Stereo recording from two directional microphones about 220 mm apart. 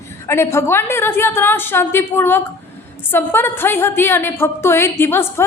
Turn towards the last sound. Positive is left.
turn(degrees=10)  # may be behind; listen again after turning